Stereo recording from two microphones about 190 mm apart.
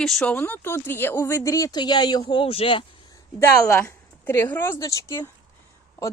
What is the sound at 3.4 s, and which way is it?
Speech, 15° left (ahead or behind).